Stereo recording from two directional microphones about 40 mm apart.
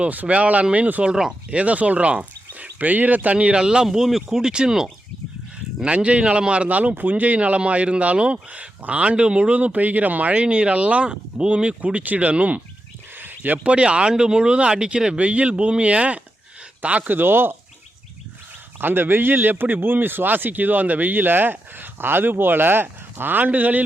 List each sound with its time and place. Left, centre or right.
0.1 s speech: right
1.0 s speech: centre
1.5 s speech: right
2.6 s speech: right
3.3 s speech: right
3.8 s speech: centre
5.8 s speech: right
10.4 s speech: right
13.1 s a sound: right
13.7 s speech: right
17.0 s speech: right
18.8 s speech: right